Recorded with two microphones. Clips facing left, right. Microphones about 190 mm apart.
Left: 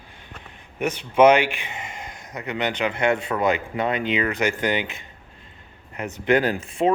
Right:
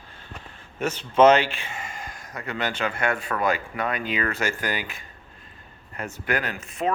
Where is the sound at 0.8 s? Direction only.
15° left (ahead or behind).